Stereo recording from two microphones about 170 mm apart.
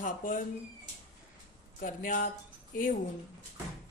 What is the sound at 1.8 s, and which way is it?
Speech, 50° left (ahead or behind).